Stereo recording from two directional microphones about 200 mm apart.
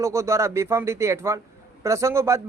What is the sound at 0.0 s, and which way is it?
A man's voice, 15° right (ahead or behind).